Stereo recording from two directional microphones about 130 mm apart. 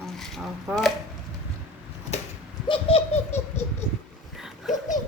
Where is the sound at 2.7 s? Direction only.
45° left (ahead or behind).